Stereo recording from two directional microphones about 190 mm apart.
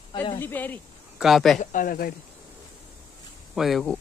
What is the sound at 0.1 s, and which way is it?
Speech, 25° left (ahead or behind).